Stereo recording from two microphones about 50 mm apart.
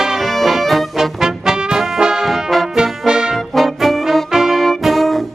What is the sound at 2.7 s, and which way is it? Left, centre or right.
Music, centre.